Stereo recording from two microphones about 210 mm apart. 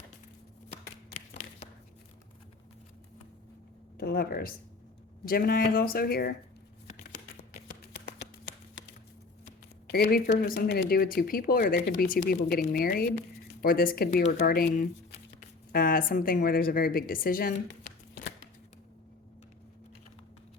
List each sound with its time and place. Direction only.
3.9 s speech: 45° left (ahead or behind)
9.9 s speech: 45° left (ahead or behind)
15.7 s speech: 45° left (ahead or behind)